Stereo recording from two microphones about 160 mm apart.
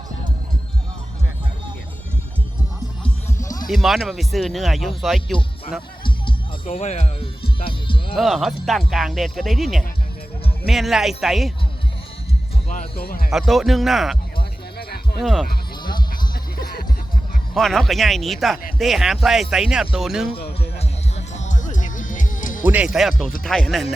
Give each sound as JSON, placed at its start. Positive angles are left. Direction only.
{"t": 3.7, "sound": "speech", "side_deg": 0}
{"t": 6.7, "sound": "speech", "side_deg": 45}
{"t": 8.1, "sound": "speech", "side_deg": 0}
{"t": 12.6, "sound": "music", "side_deg": 45}
{"t": 13.0, "sound": "speech", "side_deg": 70}
{"t": 13.3, "sound": "speech", "side_deg": 0}
{"t": 14.3, "sound": "music", "side_deg": 75}
{"t": 15.2, "sound": "speech", "side_deg": 0}
{"t": 15.8, "sound": "music", "side_deg": 30}
{"t": 16.3, "sound": "music", "side_deg": 70}
{"t": 17.5, "sound": "speech", "side_deg": 0}
{"t": 20.6, "sound": "music", "side_deg": 40}
{"t": 22.6, "sound": "speech", "side_deg": -10}